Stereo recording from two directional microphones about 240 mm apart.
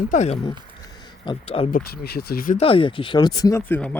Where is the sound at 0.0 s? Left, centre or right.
Left.